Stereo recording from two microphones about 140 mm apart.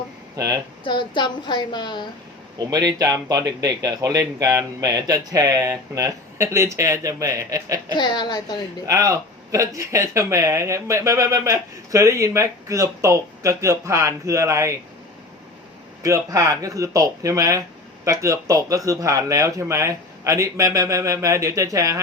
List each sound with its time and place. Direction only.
0.3 s speech: 25° right (ahead or behind)
0.9 s a woman's voice: 35° left (ahead or behind)
2.6 s speech: 25° right (ahead or behind)
7.9 s a woman's voice: 30° left (ahead or behind)
8.9 s speech: 25° right (ahead or behind)
16.0 s speech: 20° right (ahead or behind)